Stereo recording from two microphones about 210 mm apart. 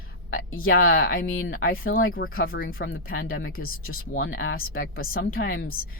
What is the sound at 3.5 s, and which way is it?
Speech, 45° left (ahead or behind).